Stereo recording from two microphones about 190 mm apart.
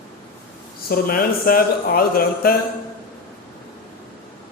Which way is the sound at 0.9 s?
50° left (ahead or behind).